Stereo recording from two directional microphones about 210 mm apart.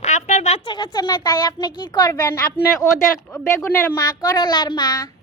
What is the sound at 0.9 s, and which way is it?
A child's voice, 20° left (ahead or behind).